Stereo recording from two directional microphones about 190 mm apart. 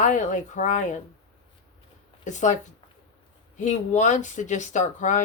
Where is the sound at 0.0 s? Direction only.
40° left (ahead or behind).